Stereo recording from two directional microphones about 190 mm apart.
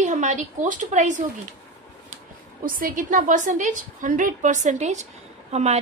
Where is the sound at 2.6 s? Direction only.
45° right (ahead or behind).